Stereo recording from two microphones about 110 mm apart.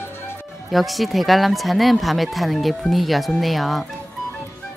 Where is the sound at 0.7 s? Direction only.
Centre (ahead or behind).